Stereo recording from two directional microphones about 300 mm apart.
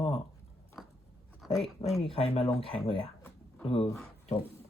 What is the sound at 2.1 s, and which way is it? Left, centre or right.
Speech, centre.